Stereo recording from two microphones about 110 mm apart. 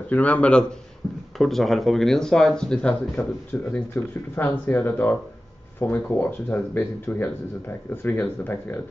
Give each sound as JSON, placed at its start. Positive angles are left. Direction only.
{"t": 0.1, "sound": "speech", "side_deg": 15}